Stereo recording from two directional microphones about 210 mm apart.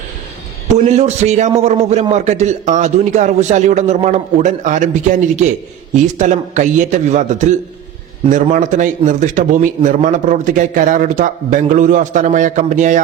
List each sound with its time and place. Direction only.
0.9 s a man's voice: 30° right (ahead or behind)